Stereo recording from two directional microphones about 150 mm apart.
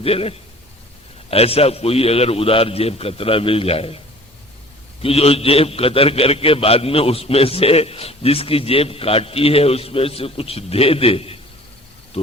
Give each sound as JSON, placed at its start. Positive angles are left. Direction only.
{"t": 0.0, "sound": "a man's voice", "side_deg": 40}
{"t": 5.0, "sound": "a man's voice", "side_deg": 40}